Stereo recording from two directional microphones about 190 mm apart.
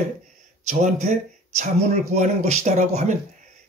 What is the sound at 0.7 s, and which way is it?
Speech, 40° right (ahead or behind).